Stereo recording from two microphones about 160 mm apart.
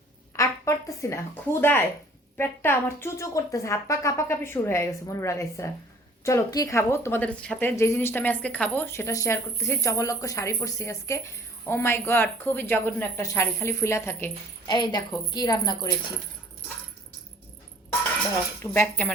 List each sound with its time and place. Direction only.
0.3 s a woman's voice: 20° left (ahead or behind)
14.7 s a woman's voice: 25° left (ahead or behind)
18.6 s speech: 15° left (ahead or behind)